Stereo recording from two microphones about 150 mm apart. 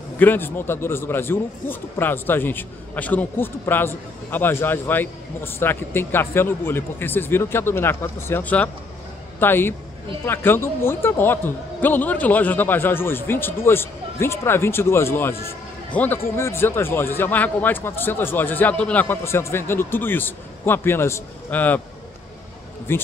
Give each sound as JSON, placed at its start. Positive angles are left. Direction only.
{"t": 0.2, "sound": "a man's voice", "side_deg": 15}
{"t": 22.9, "sound": "a man's voice", "side_deg": 15}